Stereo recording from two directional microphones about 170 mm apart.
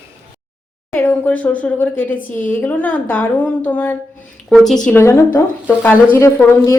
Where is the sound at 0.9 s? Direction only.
10° left (ahead or behind).